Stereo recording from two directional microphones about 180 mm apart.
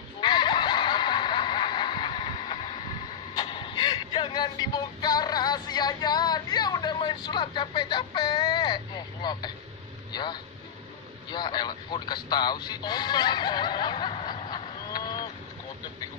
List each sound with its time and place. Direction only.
0.2 s a sound: 25° left (ahead or behind)
3.3 s music: 25° left (ahead or behind)
10.1 s speech: 25° left (ahead or behind)